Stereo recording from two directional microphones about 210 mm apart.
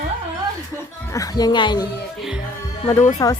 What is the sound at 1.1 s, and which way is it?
Speech, 15° left (ahead or behind).